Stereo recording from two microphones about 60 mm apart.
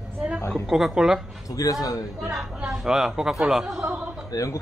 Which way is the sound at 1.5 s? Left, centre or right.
Left.